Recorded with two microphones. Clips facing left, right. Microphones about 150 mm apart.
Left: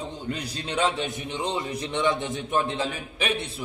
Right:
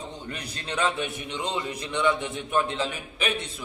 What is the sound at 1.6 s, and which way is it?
A man's voice, 25° left (ahead or behind).